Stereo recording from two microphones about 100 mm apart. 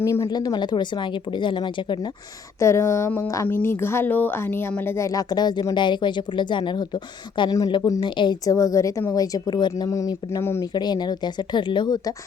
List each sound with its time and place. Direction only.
0.0 s speech: 30° left (ahead or behind)
0.3 s speech: 45° left (ahead or behind)
2.6 s speech: 30° left (ahead or behind); by 7.5 s 50° left (ahead or behind)
7.8 s speech: 35° left (ahead or behind)
8.0 s speech: 55° left (ahead or behind)
8.4 s speech: 35° left (ahead or behind)
9.9 s speech: 35° left (ahead or behind)
10.8 s speech: 45° left (ahead or behind)